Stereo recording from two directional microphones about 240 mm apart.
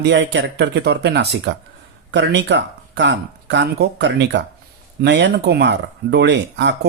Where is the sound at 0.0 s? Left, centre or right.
Right.